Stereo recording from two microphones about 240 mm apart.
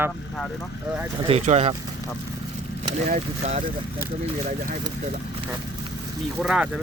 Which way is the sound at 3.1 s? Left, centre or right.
Right.